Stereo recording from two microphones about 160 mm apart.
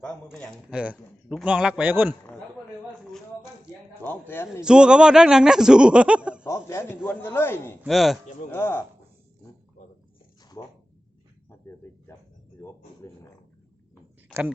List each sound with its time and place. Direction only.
0.3 s speech: 5° left (ahead or behind)
0.7 s speech: 5° right (ahead or behind)
4.0 s a man's voice: 10° left (ahead or behind)
4.6 s speech: 5° right (ahead or behind)
6.4 s a man's voice: 15° left (ahead or behind)
7.9 s speech: centre (ahead or behind)
8.4 s a man's voice: 15° left (ahead or behind)
10.6 s speech: 20° left (ahead or behind)
12.6 s a sound: 15° left (ahead or behind)